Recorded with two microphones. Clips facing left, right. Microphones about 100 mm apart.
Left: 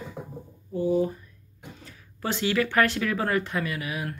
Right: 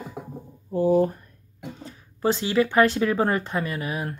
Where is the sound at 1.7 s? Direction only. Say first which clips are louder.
Right 7 dB; 30° right (ahead or behind).